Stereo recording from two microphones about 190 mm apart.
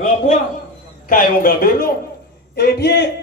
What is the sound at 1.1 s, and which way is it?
A man's voice, 45° left (ahead or behind).